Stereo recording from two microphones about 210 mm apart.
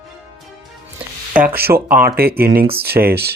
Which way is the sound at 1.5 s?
45° right (ahead or behind).